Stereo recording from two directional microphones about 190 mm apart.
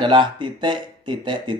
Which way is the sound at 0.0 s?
25° right (ahead or behind).